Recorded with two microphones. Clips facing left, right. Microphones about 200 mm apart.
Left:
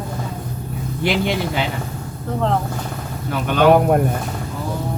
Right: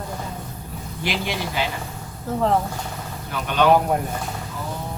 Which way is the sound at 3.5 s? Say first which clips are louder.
Left 4 dB; 55° left (ahead or behind).